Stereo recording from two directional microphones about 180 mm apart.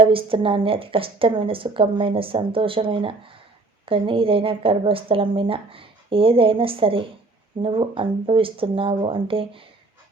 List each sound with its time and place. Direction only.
0.0 s a woman's voice: 30° right (ahead or behind)